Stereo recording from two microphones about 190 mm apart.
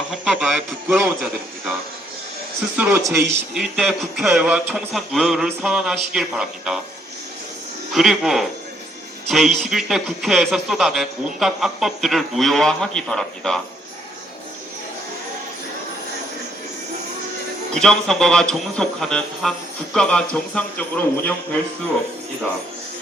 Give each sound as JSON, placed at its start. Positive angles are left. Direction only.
{"t": 0.1, "sound": "a man's voice", "side_deg": -5}
{"t": 2.7, "sound": "a man's voice", "side_deg": -5}
{"t": 3.5, "sound": "a man's voice", "side_deg": 0}
{"t": 7.9, "sound": "a man's voice", "side_deg": 0}
{"t": 17.7, "sound": "a man's voice", "side_deg": 5}